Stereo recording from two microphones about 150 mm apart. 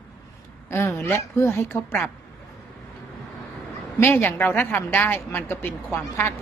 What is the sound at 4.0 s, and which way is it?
Speech, 15° left (ahead or behind).